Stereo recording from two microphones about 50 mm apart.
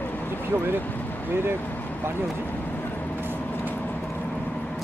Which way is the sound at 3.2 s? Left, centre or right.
Right.